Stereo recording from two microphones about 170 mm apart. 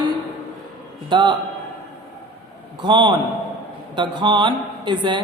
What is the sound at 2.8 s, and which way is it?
A woman's voice, 30° right (ahead or behind).